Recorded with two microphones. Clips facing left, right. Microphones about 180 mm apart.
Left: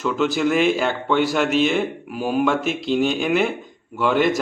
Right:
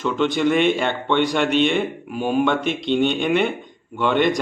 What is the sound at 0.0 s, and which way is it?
Speech, 5° left (ahead or behind).